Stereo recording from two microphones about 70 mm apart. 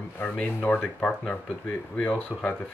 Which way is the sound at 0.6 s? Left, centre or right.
Left.